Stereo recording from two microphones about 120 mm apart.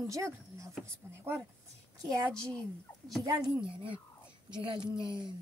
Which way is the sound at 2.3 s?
5° left (ahead or behind).